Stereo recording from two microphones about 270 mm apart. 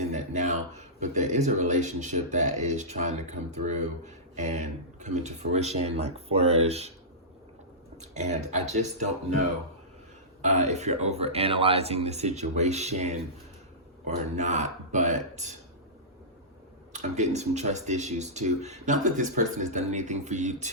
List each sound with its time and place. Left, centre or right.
0.0 s speech: right
8.1 s speech: right
10.4 s speech: right
14.3 s a man's voice: right
16.9 s speech: right